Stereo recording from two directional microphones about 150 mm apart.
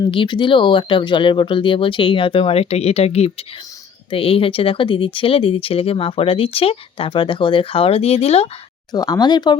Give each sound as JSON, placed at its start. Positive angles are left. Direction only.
{"t": 0.0, "sound": "speech", "side_deg": 35}
{"t": 8.9, "sound": "speech", "side_deg": 25}